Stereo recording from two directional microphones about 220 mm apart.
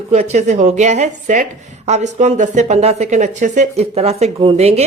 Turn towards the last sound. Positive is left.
turn(degrees=-30)  # may be behind; listen again after turning